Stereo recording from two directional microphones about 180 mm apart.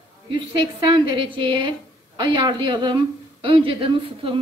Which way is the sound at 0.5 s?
25° right (ahead or behind).